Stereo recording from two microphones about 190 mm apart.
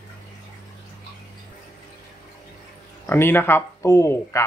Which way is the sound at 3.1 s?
10° left (ahead or behind).